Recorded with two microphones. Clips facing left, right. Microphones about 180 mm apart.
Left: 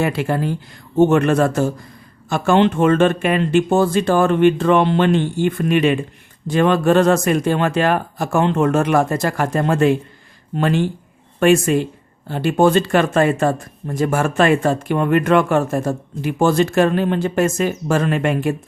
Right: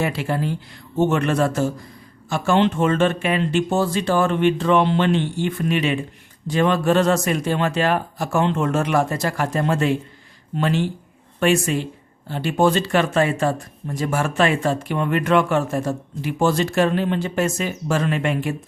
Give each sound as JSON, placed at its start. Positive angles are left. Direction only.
{"t": 0.0, "sound": "speech", "side_deg": 50}